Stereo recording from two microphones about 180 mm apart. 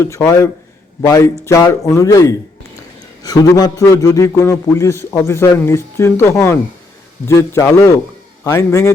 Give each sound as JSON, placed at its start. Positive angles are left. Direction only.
{"t": 0.0, "sound": "a man's voice", "side_deg": 15}